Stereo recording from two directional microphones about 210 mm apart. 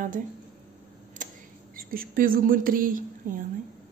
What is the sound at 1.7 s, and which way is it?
A woman's voice, 45° right (ahead or behind).